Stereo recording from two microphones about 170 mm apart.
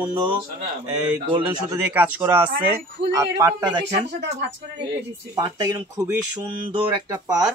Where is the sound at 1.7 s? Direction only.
10° right (ahead or behind).